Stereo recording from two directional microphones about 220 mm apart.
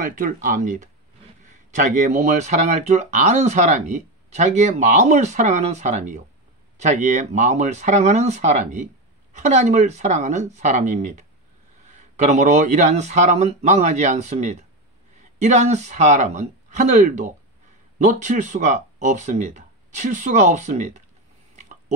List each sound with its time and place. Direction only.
0.1 s speech: 40° right (ahead or behind)